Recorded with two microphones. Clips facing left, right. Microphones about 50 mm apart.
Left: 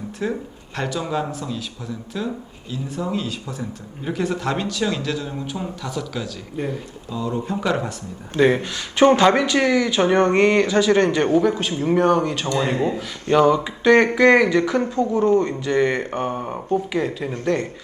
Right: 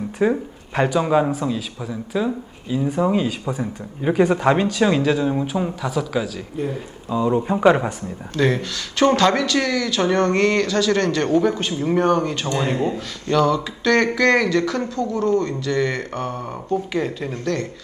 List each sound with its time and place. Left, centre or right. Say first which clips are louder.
0.2 s speech: right 7 dB; right
1.3 s speech: right 6 dB; centre
7.1 s speech: right 6 dB; right
8.4 s speech: left 3 dB; left
11.3 s speech: even; centre
12.7 s speech: even; centre
16.9 s speech: even; centre
17.4 s speech: left 3 dB; centre